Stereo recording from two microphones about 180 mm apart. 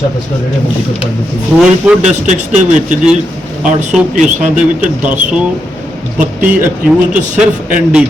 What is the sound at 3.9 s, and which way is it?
Speech, 5° right (ahead or behind).